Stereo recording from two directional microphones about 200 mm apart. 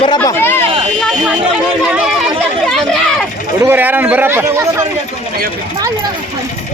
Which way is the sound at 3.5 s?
10° right (ahead or behind).